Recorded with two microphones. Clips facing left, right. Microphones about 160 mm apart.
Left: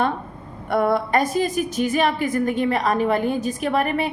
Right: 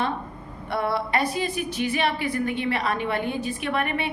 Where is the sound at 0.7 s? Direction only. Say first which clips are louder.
Left 6 dB; 50° left (ahead or behind).